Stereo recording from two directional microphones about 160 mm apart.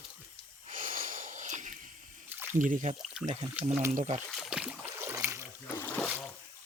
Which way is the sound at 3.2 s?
5° right (ahead or behind).